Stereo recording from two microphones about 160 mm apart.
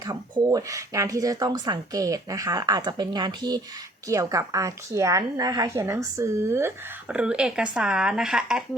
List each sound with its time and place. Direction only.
0.0 s speech: 25° right (ahead or behind); by 8.6 s 5° right (ahead or behind)